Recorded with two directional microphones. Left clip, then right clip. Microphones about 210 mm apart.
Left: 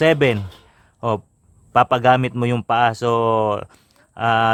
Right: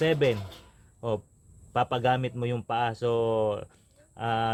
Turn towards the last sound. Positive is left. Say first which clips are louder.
# left 11 dB
turn(degrees=35)  # may be behind; listen again after turning